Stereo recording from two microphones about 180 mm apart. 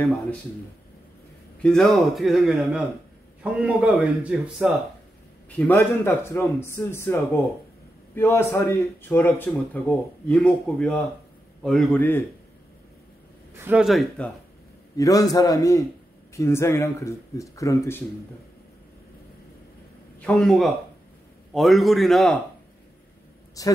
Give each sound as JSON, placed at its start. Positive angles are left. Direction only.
{"t": 1.6, "sound": "a man's voice", "side_deg": 0}
{"t": 5.5, "sound": "a man's voice", "side_deg": 10}
{"t": 13.6, "sound": "speech", "side_deg": -5}
{"t": 15.0, "sound": "a man's voice", "side_deg": 20}
{"t": 20.2, "sound": "speech", "side_deg": 5}
{"t": 23.6, "sound": "a man's voice", "side_deg": 20}